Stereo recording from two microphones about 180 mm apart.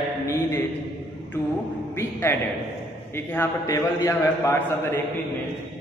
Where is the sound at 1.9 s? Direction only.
10° left (ahead or behind).